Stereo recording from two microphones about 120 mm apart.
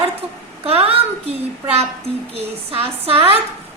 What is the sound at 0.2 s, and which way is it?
A woman's voice, 55° right (ahead or behind).